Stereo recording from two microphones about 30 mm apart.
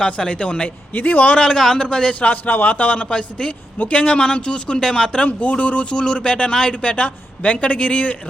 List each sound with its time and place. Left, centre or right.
0.0 s speech: left
0.9 s a man's voice: left
1.5 s a man's voice: centre
1.8 s speech: left
2.3 s a man's voice: left
2.7 s speech: left
3.1 s speech: left
4.8 s speech: left
5.2 s speech: left
5.9 s speech: left